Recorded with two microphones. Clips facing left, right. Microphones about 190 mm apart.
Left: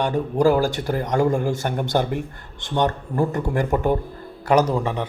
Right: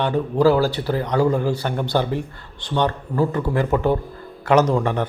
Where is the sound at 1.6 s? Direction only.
15° left (ahead or behind).